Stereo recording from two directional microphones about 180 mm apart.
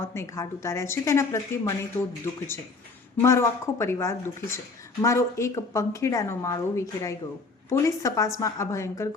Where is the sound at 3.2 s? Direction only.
15° left (ahead or behind).